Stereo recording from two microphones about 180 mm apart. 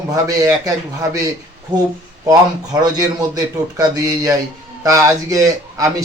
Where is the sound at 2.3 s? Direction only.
20° right (ahead or behind).